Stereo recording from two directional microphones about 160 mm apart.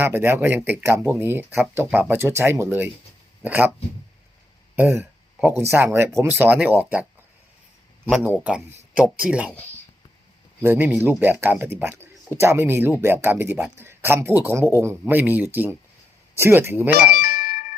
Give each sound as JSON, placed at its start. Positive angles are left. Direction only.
{"t": 0.0, "sound": "speech", "side_deg": -15}
{"t": 4.8, "sound": "speech", "side_deg": -10}
{"t": 9.0, "sound": "speech", "side_deg": -10}
{"t": 10.6, "sound": "speech", "side_deg": -15}
{"t": 17.0, "sound": "music", "side_deg": 65}